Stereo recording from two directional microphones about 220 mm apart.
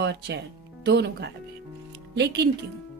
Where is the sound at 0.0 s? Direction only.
50° right (ahead or behind).